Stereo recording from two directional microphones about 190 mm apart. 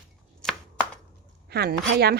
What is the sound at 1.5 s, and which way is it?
Speech, 60° right (ahead or behind).